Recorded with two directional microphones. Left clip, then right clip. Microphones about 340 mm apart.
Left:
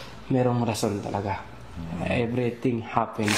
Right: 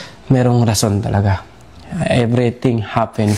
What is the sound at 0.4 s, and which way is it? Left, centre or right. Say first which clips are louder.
A man's voice: right 8 dB; right.